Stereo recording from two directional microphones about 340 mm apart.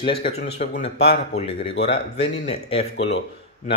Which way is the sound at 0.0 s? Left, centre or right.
Centre.